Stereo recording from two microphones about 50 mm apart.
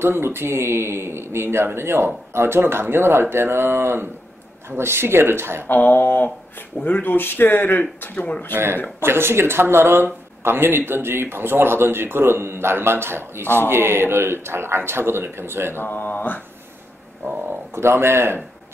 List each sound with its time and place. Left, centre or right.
0.0 s speech: right
5.7 s speech: left
9.0 s speech: right
15.8 s speech: left
17.3 s a sound: right
17.7 s speech: right